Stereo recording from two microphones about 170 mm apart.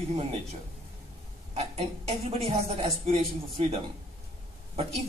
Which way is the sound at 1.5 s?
40° right (ahead or behind).